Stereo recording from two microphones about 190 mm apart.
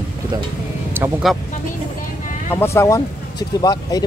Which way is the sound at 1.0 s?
10° right (ahead or behind).